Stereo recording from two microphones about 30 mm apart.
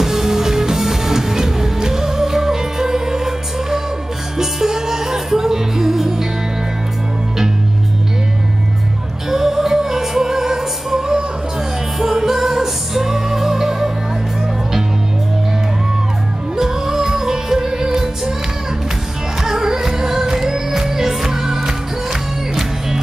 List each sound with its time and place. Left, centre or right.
0.0 s music: centre
9.3 s music: centre
16.5 s music: centre
19.4 s music: centre